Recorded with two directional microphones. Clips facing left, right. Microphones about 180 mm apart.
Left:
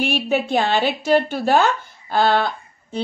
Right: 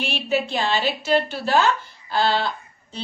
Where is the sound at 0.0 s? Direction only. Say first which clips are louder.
Left 3 dB; 50° left (ahead or behind).